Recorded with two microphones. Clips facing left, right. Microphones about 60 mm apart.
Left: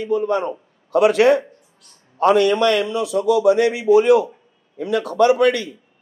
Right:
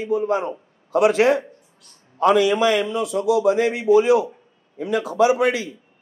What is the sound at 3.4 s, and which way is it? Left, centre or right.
Speech, left.